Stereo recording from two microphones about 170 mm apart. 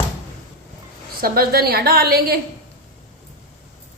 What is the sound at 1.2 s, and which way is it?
Speech, 65° right (ahead or behind).